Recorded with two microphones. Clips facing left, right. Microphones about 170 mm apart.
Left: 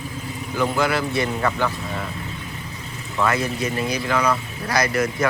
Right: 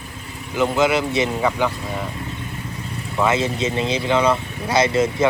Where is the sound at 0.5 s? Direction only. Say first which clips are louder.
Right 3 dB; 20° right (ahead or behind).